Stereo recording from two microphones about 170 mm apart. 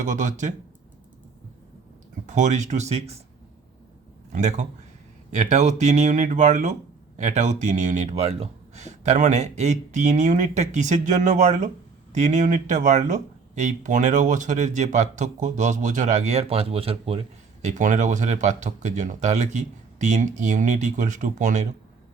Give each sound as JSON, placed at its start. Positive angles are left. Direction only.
{"t": 0.0, "sound": "speech", "side_deg": -45}
{"t": 2.2, "sound": "speech", "side_deg": -45}
{"t": 4.3, "sound": "speech", "side_deg": -45}
{"t": 17.6, "sound": "speech", "side_deg": -45}